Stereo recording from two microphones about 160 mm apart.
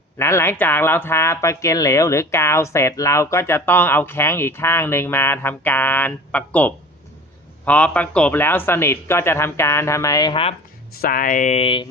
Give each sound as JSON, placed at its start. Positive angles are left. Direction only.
{"t": 0.2, "sound": "speech", "side_deg": 15}
{"t": 10.9, "sound": "speech", "side_deg": 65}